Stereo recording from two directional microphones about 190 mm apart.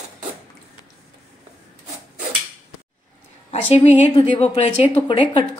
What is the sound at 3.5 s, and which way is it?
A woman's voice, 30° left (ahead or behind).